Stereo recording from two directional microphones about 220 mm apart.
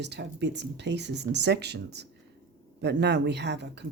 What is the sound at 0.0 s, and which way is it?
Speech, 50° right (ahead or behind).